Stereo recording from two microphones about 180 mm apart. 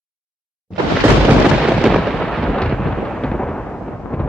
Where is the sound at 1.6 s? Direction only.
Centre (ahead or behind).